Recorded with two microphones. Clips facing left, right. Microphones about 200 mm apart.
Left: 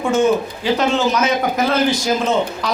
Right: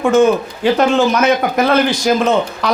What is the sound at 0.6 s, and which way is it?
A man's voice, 55° right (ahead or behind).